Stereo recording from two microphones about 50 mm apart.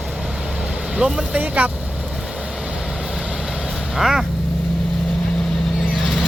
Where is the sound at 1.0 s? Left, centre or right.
Right.